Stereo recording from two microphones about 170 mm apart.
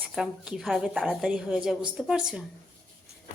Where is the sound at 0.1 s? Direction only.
Centre (ahead or behind).